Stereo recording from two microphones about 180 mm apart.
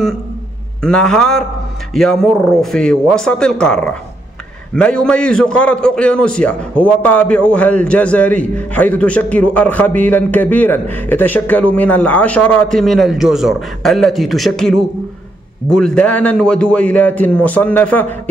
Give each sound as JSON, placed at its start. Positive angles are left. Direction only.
{"t": 0.8, "sound": "a man's voice", "side_deg": 5}